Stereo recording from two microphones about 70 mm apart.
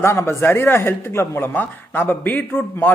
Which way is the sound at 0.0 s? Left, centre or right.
Left.